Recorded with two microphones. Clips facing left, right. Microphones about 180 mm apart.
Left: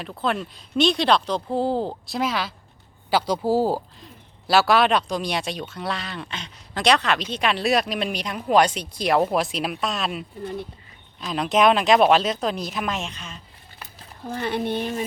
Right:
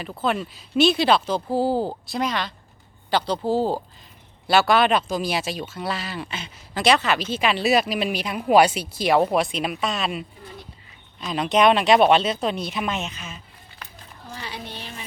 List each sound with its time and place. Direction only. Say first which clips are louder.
0.0 s speech: right 1 dB; centre (ahead or behind)
14.3 s speech: left 11 dB; 55° left (ahead or behind)